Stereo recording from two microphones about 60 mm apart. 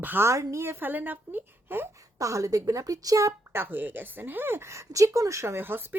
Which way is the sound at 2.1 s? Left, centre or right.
Right.